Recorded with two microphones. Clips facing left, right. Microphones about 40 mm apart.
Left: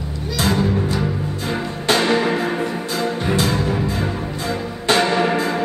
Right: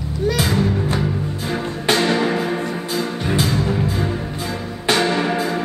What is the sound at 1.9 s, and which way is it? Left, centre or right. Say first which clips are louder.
Music: left 1 dB; centre.